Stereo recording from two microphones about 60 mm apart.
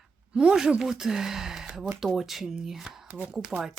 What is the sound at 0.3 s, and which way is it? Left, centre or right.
Speech, centre.